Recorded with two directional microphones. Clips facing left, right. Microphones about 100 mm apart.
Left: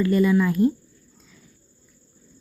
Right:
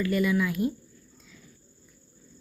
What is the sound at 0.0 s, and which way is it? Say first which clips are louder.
Speech: left 6 dB; 35° left (ahead or behind).